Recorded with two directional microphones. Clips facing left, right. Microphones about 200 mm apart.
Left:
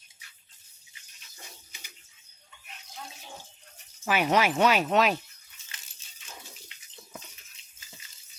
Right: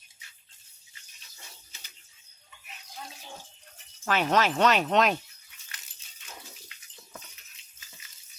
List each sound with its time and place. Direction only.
4.0 s speech: 10° left (ahead or behind)